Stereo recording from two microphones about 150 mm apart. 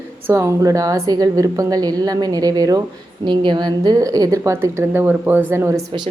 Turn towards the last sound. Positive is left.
turn(degrees=-15)  # may be behind; listen again after turning